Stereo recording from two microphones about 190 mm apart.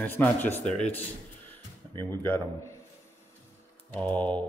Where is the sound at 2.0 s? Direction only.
10° left (ahead or behind).